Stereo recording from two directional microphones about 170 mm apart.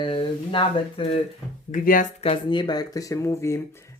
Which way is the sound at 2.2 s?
30° left (ahead or behind).